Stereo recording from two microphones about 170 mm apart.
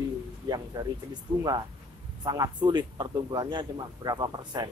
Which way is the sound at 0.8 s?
20° right (ahead or behind).